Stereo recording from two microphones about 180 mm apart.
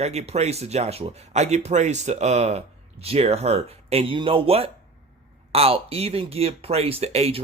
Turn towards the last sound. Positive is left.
turn(degrees=-35)  # may be behind; listen again after turning